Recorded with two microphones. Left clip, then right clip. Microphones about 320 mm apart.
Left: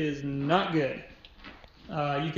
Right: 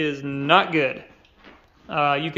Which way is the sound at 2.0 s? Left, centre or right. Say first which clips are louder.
Right 9 dB; centre.